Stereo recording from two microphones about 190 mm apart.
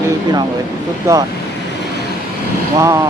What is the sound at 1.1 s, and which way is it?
Speech, 15° right (ahead or behind).